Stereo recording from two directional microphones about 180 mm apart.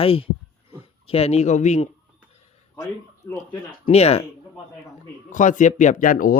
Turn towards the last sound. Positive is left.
turn(degrees=50)  # may be behind; listen again after turning